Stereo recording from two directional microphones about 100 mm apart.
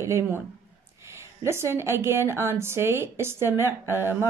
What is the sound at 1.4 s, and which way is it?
Speech, 25° right (ahead or behind).